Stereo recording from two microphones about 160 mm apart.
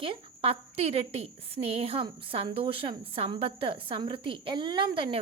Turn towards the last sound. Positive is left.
turn(degrees=-30)  # may be behind; listen again after turning